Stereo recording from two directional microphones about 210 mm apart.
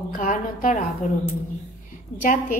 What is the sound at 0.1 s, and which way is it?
Speech, 40° left (ahead or behind).